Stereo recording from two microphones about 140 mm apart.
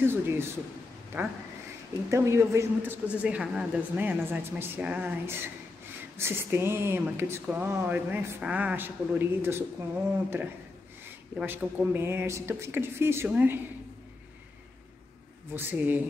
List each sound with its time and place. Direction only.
0.0 s speech: 15° right (ahead or behind)
11.3 s speech: 15° right (ahead or behind)
15.5 s speech: 10° right (ahead or behind)